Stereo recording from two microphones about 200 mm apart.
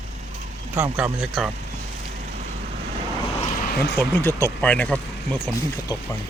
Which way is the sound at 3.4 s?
45° left (ahead or behind).